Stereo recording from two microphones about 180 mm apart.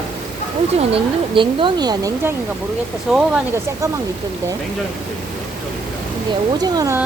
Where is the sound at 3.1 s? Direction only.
5° right (ahead or behind).